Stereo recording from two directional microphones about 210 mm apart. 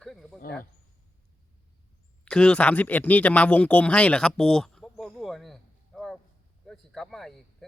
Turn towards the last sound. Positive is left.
turn(degrees=0)  # may be behind; listen again after turning